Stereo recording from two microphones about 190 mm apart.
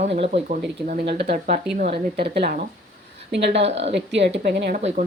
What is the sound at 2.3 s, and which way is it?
A woman's voice, 55° right (ahead or behind).